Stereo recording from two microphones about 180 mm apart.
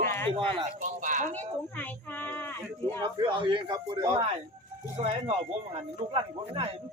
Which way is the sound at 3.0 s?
25° right (ahead or behind).